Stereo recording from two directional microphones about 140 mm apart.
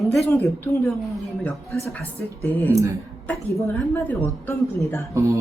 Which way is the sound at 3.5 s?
15° left (ahead or behind).